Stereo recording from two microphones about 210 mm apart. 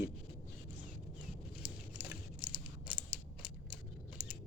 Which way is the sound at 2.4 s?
5° right (ahead or behind).